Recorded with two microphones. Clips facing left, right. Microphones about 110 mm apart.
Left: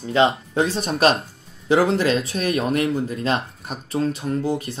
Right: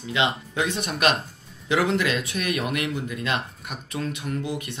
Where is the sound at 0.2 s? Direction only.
40° left (ahead or behind).